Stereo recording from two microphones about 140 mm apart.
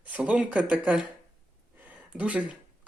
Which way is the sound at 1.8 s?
10° right (ahead or behind).